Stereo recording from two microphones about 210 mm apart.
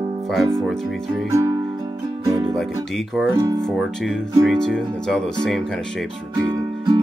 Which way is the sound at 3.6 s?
Centre (ahead or behind).